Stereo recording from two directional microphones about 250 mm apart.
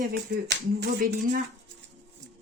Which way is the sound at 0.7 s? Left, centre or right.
Right.